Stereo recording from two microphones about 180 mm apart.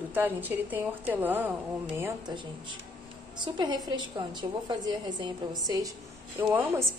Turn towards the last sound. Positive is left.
turn(degrees=-15)  # may be behind; listen again after turning